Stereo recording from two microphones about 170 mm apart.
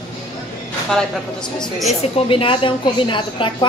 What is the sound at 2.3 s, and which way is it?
A woman's voice, 30° left (ahead or behind).